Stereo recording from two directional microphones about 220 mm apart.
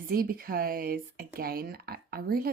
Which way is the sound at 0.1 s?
40° right (ahead or behind).